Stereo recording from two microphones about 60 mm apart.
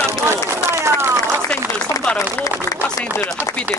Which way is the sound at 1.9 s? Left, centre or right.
Right.